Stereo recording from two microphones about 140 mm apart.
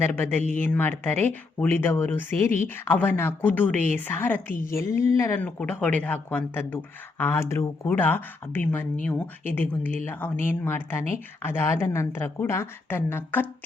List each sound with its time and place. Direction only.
0.0 s speech: 15° left (ahead or behind)